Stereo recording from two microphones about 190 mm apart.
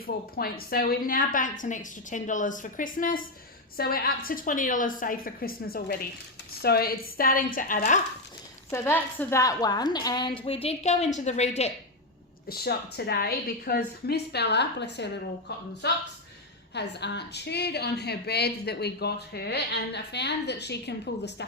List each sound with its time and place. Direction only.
0.0 s a woman's voice: 50° left (ahead or behind)
8.7 s a woman's voice: 10° left (ahead or behind); by 11.7 s 35° left (ahead or behind)
12.5 s a woman's voice: 55° left (ahead or behind)